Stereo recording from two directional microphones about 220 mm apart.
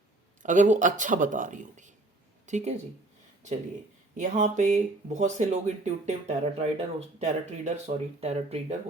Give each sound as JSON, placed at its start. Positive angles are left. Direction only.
{"t": 0.4, "sound": "speech", "side_deg": -35}
{"t": 4.2, "sound": "speech", "side_deg": -35}